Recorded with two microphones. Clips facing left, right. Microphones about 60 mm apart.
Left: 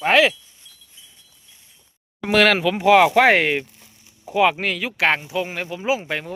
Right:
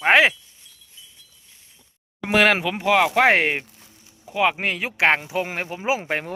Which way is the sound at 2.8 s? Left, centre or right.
Centre.